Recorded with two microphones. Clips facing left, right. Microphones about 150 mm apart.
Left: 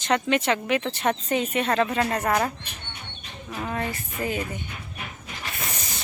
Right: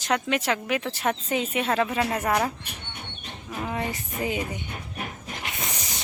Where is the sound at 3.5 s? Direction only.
5° right (ahead or behind).